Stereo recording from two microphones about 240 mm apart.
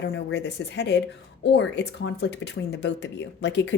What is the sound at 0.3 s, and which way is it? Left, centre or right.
A woman's voice, left.